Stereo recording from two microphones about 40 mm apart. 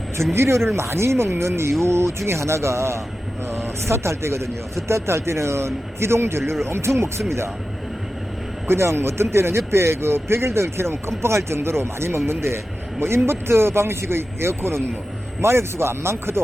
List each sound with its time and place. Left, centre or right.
0.3 s a man's voice: right
8.6 s a man's voice: right